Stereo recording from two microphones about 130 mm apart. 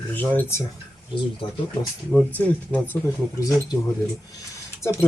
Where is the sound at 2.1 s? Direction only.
10° left (ahead or behind).